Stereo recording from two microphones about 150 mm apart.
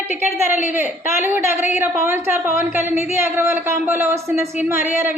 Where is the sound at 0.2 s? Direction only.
15° right (ahead or behind).